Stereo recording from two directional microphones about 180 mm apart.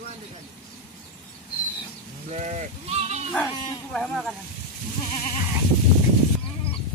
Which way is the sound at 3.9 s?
Centre (ahead or behind).